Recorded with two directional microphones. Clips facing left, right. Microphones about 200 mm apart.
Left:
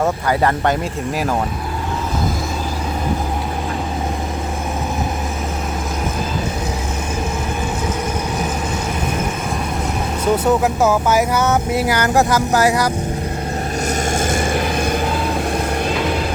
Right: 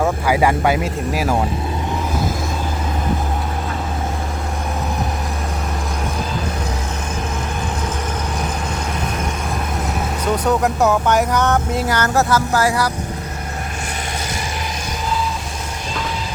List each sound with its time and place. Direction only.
0.0 s speech: 10° right (ahead or behind)
10.2 s speech: 5° left (ahead or behind)
15.0 s vehicle: 60° left (ahead or behind)